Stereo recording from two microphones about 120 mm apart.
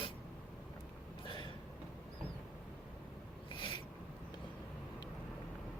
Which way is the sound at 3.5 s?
45° left (ahead or behind).